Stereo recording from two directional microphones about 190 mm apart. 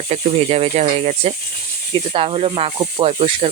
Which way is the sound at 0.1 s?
35° right (ahead or behind).